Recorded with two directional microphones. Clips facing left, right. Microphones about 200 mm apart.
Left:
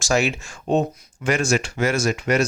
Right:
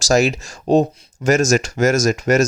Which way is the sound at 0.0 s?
40° right (ahead or behind).